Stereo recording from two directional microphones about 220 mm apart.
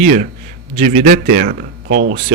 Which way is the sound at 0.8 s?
40° right (ahead or behind).